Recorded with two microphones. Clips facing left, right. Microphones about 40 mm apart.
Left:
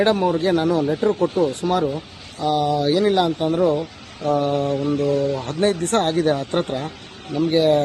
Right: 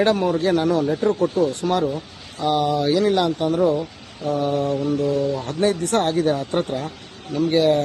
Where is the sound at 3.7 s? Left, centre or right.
Left.